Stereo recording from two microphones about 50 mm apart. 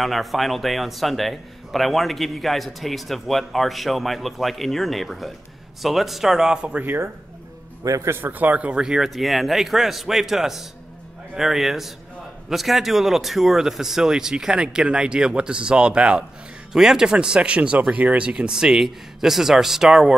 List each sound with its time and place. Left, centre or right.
0.0 s a man's voice: centre
6.7 s a man's voice: right
7.9 s speech: right
8.2 s a man's voice: right
8.7 s a man's voice: centre